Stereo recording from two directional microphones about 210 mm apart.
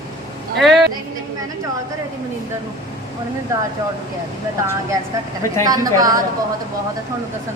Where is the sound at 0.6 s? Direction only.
Centre (ahead or behind).